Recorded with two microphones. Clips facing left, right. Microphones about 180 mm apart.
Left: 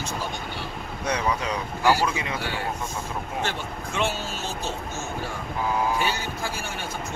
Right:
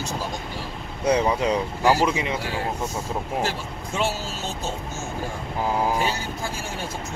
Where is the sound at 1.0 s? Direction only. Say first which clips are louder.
Right 6 dB; 30° right (ahead or behind).